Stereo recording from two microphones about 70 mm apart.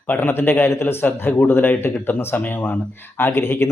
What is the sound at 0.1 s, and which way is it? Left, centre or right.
Speech, left.